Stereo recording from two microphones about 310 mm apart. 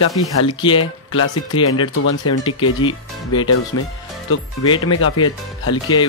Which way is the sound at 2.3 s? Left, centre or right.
Centre.